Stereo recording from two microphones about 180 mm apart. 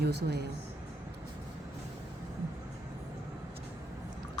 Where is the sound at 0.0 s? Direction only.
65° right (ahead or behind).